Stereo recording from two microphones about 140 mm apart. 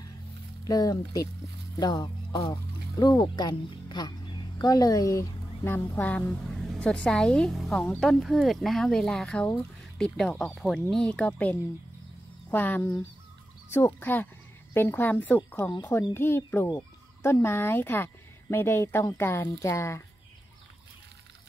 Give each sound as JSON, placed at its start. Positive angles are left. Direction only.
{"t": 0.7, "sound": "speech", "side_deg": 25}